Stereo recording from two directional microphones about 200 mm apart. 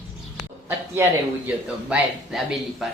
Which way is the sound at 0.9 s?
10° right (ahead or behind).